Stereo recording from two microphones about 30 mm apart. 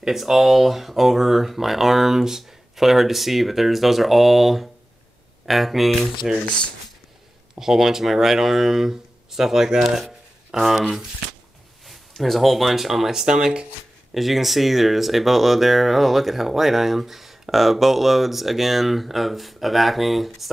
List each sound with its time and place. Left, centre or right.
0.2 s speech: centre
7.5 s speech: centre
12.2 s speech: centre
13.1 s speech: right
14.1 s speech: centre